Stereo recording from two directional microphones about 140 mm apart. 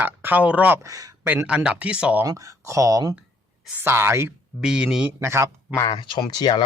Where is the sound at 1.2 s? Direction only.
10° right (ahead or behind).